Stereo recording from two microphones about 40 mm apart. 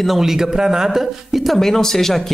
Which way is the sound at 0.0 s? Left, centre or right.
Centre.